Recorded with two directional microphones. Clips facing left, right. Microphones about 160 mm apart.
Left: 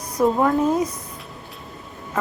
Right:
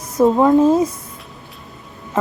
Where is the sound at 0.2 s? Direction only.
25° right (ahead or behind).